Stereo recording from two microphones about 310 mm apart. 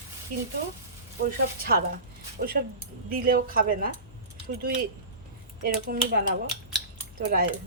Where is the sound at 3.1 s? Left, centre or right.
Right.